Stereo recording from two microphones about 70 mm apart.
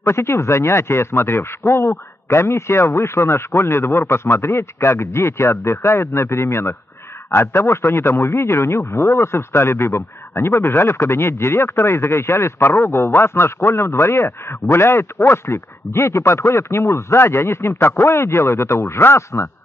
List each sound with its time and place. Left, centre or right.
0.0 s speech: left